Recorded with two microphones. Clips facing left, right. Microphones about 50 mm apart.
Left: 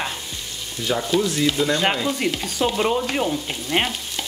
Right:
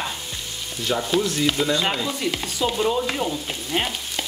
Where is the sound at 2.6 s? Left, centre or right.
Left.